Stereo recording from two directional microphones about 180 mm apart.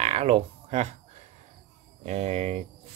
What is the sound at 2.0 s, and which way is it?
Speech, 35° right (ahead or behind).